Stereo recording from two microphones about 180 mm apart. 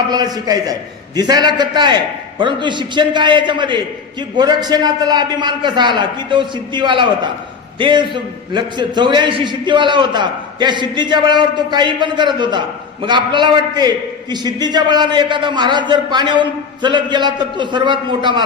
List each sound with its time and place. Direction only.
0.1 s a man's voice: 20° right (ahead or behind)